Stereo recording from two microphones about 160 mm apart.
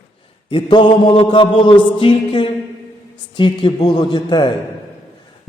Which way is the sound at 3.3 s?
30° left (ahead or behind).